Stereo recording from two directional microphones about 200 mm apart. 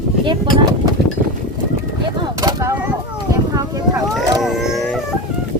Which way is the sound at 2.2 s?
15° right (ahead or behind).